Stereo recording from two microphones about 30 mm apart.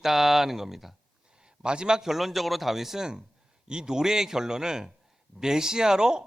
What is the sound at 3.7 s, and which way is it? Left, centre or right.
A man's voice, right.